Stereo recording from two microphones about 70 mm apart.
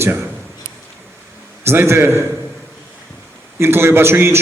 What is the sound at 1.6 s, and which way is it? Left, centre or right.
Speech, right.